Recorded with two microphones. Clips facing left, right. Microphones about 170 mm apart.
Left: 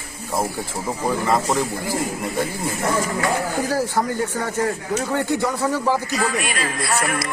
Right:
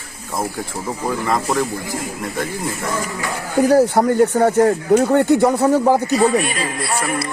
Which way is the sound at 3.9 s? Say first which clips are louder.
Right 8 dB; 50° right (ahead or behind).